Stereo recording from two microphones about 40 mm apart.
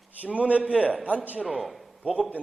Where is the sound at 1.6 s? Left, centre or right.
Centre.